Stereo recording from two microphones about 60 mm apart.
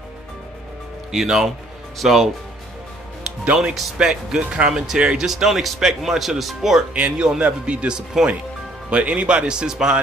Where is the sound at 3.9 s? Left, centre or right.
Centre.